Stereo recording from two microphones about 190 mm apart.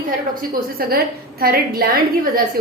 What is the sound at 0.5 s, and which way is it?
A woman's voice, 50° right (ahead or behind).